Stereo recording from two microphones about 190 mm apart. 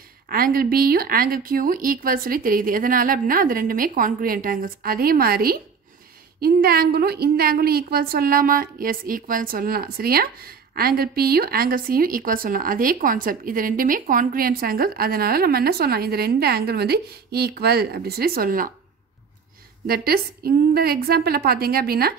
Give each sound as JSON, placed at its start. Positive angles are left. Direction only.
{"t": 0.3, "sound": "a woman's voice", "side_deg": -50}
{"t": 19.9, "sound": "a woman's voice", "side_deg": -55}